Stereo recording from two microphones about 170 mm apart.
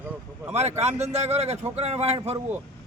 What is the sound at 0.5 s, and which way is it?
A man's voice, 40° right (ahead or behind).